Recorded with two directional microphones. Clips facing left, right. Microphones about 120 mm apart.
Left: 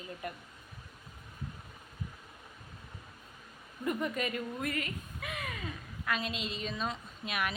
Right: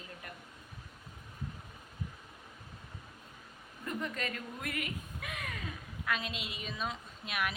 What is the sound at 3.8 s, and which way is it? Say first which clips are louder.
Speech: left 5 dB; 10° left (ahead or behind).